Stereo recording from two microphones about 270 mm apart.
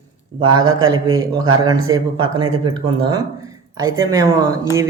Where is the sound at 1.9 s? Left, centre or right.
Centre.